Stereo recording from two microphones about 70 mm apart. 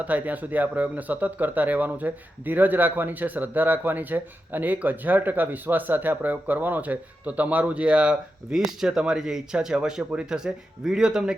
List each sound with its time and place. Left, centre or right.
0.0 s speech: right